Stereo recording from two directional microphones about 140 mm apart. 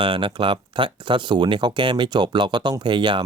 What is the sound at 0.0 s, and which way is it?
Speech, 35° right (ahead or behind).